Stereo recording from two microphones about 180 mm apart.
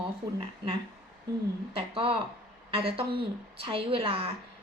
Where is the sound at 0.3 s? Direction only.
30° right (ahead or behind).